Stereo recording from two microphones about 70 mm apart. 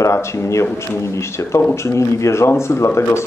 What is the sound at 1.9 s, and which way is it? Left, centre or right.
Speech, left.